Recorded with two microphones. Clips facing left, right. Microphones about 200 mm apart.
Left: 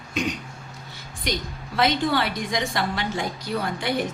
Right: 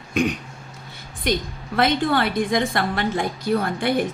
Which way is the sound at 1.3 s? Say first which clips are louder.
Right 5 dB; 55° right (ahead or behind).